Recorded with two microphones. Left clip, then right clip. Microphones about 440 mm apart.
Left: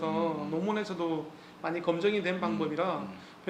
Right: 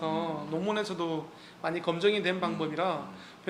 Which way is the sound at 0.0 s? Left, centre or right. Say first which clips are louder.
Left 1 dB; centre.